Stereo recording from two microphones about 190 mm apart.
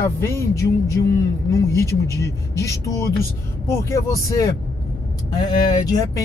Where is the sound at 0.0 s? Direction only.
15° left (ahead or behind).